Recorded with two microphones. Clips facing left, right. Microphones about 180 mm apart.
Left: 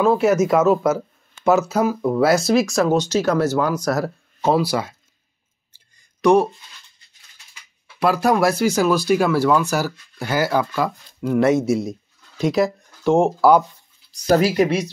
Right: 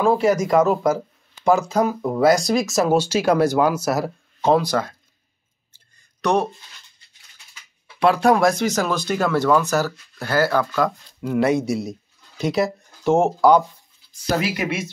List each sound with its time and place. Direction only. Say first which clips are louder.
0.2 s speech: left 1 dB; 5° left (ahead or behind)
4.4 s speech: right 1 dB; 10° left (ahead or behind)
8.0 s speech: right 1 dB; 5° left (ahead or behind)
14.2 s speech: left 7 dB; 45° left (ahead or behind)